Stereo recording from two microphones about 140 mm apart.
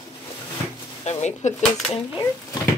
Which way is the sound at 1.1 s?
55° left (ahead or behind).